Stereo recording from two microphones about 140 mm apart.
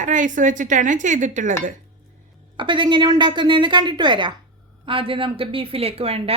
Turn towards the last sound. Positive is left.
turn(degrees=-45)  # may be behind; listen again after turning